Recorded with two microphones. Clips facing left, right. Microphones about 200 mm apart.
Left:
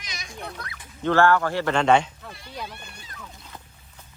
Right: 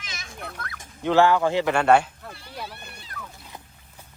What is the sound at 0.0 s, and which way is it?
Children playing, 15° left (ahead or behind).